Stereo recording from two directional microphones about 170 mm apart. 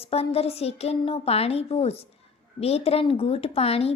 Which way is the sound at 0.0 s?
35° left (ahead or behind).